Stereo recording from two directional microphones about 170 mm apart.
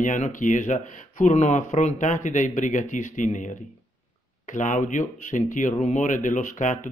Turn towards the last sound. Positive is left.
turn(degrees=45)  # may be behind; listen again after turning